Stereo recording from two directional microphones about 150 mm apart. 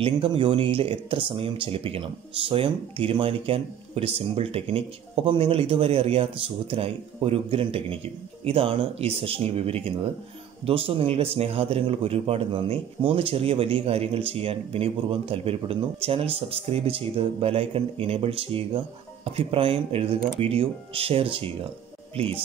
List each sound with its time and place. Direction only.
0.0 s speech: 35° right (ahead or behind)